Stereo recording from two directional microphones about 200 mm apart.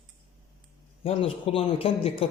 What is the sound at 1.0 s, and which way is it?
A man's voice, 30° left (ahead or behind).